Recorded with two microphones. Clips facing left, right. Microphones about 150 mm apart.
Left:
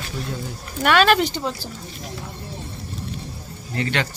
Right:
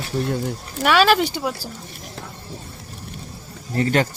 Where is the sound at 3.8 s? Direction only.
40° right (ahead or behind).